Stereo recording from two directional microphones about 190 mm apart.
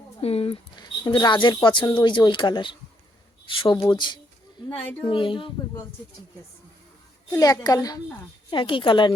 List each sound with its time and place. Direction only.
0.2 s speech: 30° left (ahead or behind)
4.8 s speech: 10° left (ahead or behind)
5.0 s speech: 25° left (ahead or behind)
7.3 s speech: 20° left (ahead or behind)